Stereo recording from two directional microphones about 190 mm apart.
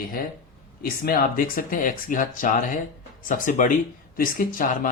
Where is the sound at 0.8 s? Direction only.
50° left (ahead or behind).